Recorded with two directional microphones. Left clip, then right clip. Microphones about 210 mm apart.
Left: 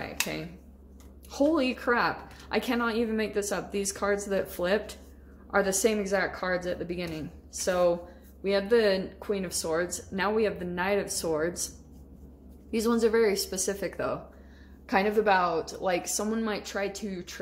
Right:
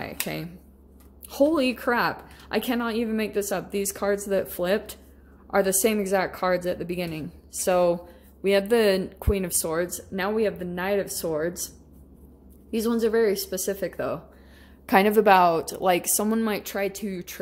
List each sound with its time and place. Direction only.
1.3 s a woman's voice: 30° right (ahead or behind)
12.7 s a woman's voice: 20° right (ahead or behind)
14.9 s a woman's voice: 45° right (ahead or behind)